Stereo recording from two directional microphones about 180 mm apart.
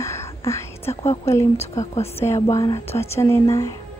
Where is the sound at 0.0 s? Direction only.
15° left (ahead or behind).